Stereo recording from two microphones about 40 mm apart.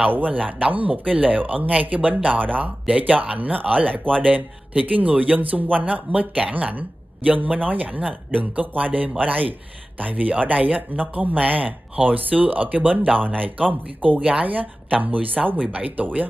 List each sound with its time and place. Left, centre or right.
0.1 s speech: right
5.4 s speech: right